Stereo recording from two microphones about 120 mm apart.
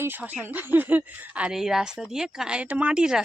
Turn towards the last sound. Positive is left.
turn(degrees=-5)  # may be behind; listen again after turning